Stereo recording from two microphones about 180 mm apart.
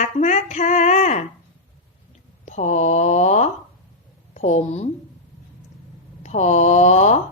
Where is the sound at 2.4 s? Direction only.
40° left (ahead or behind).